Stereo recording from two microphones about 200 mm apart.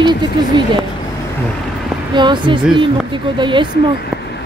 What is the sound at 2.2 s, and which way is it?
Speech, 25° right (ahead or behind).